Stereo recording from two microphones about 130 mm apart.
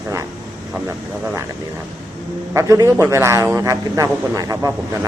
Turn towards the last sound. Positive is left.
turn(degrees=-25)  # may be behind; listen again after turning